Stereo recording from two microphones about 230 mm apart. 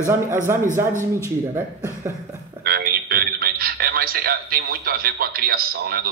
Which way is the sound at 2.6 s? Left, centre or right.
Right.